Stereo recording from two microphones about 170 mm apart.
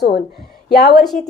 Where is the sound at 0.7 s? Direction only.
70° left (ahead or behind).